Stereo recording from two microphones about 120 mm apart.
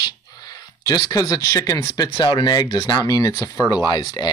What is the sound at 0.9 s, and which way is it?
Speech, 30° left (ahead or behind).